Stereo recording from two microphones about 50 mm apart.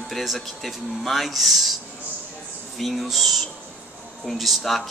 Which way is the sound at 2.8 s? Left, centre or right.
Centre.